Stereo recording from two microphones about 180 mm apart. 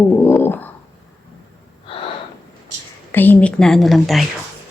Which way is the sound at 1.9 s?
30° left (ahead or behind).